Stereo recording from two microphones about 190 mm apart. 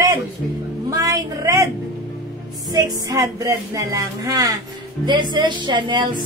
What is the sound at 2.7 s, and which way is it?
Speech, 20° right (ahead or behind).